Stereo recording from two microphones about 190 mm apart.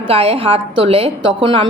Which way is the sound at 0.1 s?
30° right (ahead or behind).